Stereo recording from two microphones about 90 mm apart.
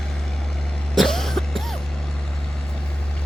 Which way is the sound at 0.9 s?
5° left (ahead or behind).